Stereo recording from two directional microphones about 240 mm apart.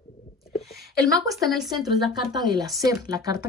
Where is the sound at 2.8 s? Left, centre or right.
Centre.